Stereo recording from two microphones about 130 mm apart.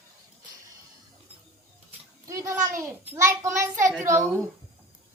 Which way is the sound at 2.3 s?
20° right (ahead or behind).